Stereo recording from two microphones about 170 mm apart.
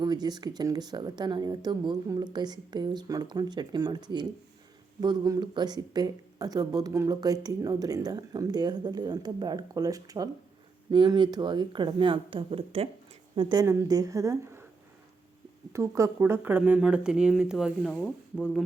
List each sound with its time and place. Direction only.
0.0 s speech: 25° right (ahead or behind)
15.7 s speech: 15° right (ahead or behind)